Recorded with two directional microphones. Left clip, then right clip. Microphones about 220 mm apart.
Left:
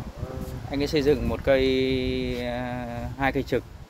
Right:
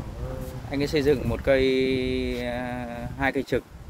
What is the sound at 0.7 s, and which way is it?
Speech, 5° right (ahead or behind).